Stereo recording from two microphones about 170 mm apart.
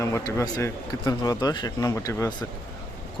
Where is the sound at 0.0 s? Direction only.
15° left (ahead or behind).